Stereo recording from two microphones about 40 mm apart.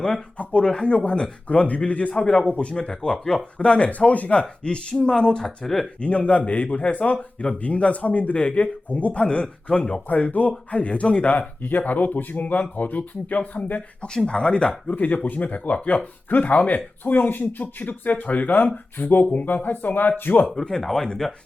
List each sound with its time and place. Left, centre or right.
0.6 s a man's voice: centre
3.6 s a man's voice: left
4.4 s a man's voice: left
5.6 s speech: centre
6.0 s a man's voice: left
9.2 s a man's voice: left
10.1 s a man's voice: left
14.3 s a man's voice: left
20.6 s speech: centre